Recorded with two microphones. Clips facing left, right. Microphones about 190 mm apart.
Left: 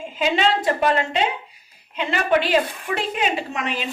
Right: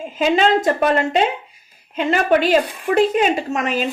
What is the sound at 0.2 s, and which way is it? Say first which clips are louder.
A woman's voice: right 5 dB; 45° right (ahead or behind).